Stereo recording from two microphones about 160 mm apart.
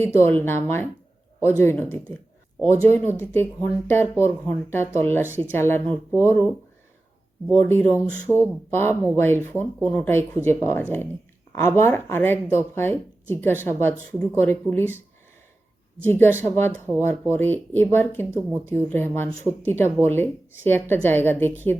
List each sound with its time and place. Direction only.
0.2 s speech: 15° left (ahead or behind)
7.7 s speech: 15° left (ahead or behind)
16.0 s speech: 15° left (ahead or behind)